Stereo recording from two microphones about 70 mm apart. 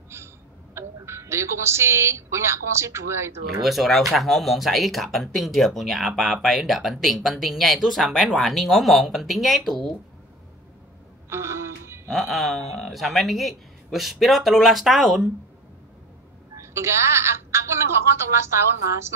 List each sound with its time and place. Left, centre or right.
0.1 s a sound: right
0.7 s a woman's voice: right
3.6 s speech: centre
11.2 s a sound: right
12.1 s speech: centre
16.5 s a woman's voice: right